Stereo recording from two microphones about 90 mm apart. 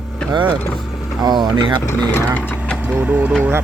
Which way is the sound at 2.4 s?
20° left (ahead or behind).